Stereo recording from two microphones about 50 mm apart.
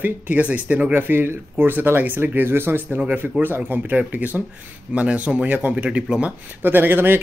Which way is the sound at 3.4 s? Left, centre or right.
Right.